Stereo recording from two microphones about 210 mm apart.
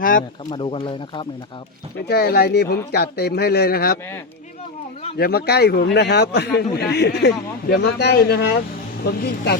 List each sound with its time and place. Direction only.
0.0 s a sound: 40° left (ahead or behind)
0.5 s speech: 25° left (ahead or behind)
2.0 s a man's voice: 50° left (ahead or behind)
5.1 s a man's voice: 50° left (ahead or behind)